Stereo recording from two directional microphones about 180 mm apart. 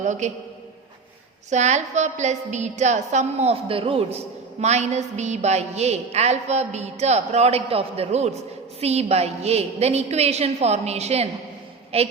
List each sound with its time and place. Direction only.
0.0 s a man's voice: 45° right (ahead or behind)
1.5 s a woman's voice: 40° right (ahead or behind)